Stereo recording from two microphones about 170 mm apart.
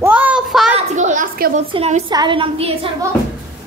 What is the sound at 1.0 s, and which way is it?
Speech, 45° right (ahead or behind).